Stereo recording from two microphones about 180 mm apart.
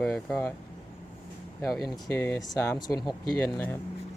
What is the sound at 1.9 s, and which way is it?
Speech, 15° left (ahead or behind).